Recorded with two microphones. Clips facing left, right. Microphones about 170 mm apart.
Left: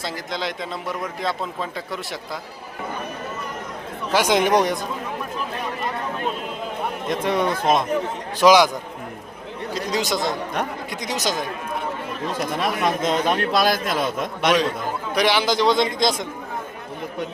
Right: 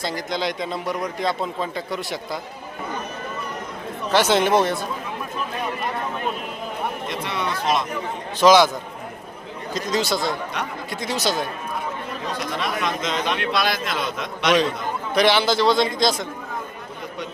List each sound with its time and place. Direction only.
0.0 s a man's voice: centre (ahead or behind)
4.1 s speech: 10° left (ahead or behind)
7.1 s a man's voice: 45° left (ahead or behind)
8.4 s speech: 10° left (ahead or behind)
9.7 s speech: 15° left (ahead or behind)
13.0 s a man's voice: 50° left (ahead or behind)
15.1 s a man's voice: 10° left (ahead or behind)